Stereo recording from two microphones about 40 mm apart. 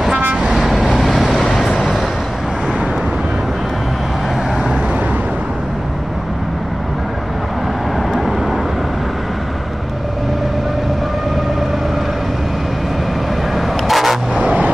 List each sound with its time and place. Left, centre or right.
0.2 s vehicle: right
0.5 s vehicle: centre
8.1 s vehicle: centre
13.6 s vehicle: centre
14.3 s vehicle: right